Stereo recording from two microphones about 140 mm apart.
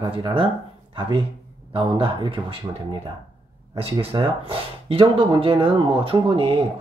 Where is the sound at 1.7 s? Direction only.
35° right (ahead or behind).